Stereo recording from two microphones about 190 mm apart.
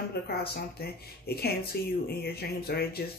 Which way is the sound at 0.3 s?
55° left (ahead or behind).